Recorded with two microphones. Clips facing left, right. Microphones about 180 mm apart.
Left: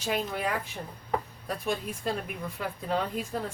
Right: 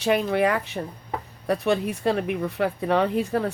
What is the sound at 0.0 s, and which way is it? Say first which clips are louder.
Speech: right 9 dB; 70° right (ahead or behind).